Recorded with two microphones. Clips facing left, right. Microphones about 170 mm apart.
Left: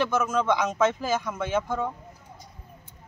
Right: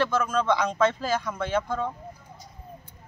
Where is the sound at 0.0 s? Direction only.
10° left (ahead or behind).